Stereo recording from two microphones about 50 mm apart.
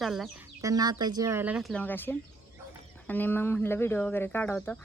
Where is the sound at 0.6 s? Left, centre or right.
Right.